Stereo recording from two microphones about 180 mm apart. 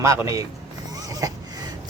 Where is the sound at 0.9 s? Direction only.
20° right (ahead or behind).